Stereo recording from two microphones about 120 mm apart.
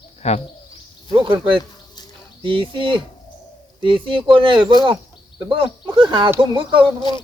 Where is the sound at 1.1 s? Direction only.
45° right (ahead or behind).